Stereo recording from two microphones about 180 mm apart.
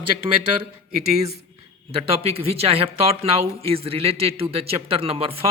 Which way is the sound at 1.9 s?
35° right (ahead or behind).